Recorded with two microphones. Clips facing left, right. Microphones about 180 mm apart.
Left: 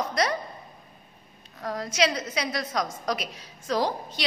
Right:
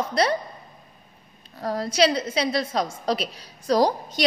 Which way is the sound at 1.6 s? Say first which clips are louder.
Right 5 dB; 35° right (ahead or behind).